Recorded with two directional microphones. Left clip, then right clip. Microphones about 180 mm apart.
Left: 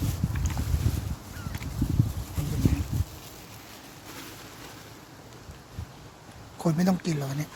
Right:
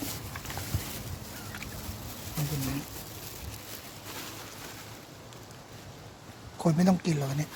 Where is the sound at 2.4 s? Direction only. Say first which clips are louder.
Right 1 dB; 25° right (ahead or behind).